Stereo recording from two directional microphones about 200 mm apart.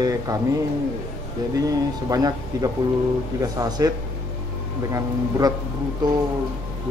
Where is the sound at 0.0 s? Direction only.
20° right (ahead or behind).